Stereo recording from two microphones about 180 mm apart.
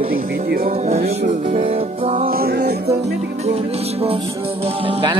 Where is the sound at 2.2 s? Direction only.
55° right (ahead or behind).